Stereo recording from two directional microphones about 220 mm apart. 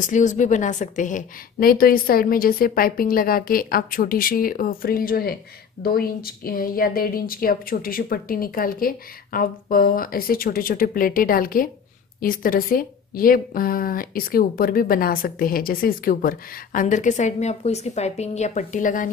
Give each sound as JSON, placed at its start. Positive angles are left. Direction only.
{"t": 0.0, "sound": "a woman's voice", "side_deg": 35}